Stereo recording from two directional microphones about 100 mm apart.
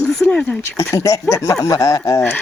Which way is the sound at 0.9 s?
35° left (ahead or behind).